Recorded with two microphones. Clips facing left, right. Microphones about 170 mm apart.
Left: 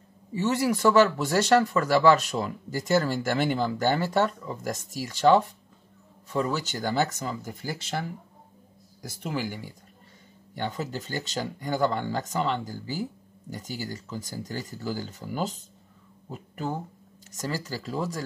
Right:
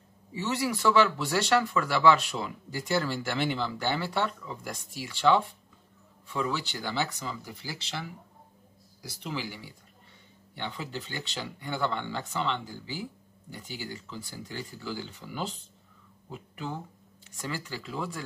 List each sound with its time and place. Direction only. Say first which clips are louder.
0.3 s speech: left 5 dB; 45° left (ahead or behind)